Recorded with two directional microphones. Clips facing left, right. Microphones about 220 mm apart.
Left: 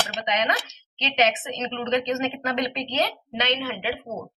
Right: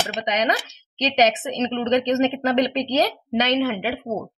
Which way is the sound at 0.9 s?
35° right (ahead or behind).